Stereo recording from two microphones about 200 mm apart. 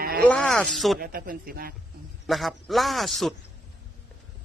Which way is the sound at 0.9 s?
45° right (ahead or behind).